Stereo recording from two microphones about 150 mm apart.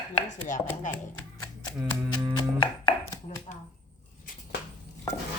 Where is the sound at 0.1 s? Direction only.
60° left (ahead or behind).